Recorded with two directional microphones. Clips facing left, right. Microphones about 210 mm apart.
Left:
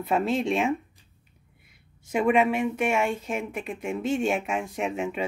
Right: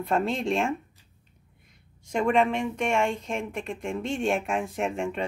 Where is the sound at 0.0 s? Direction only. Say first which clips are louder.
Left 1 dB; 5° left (ahead or behind).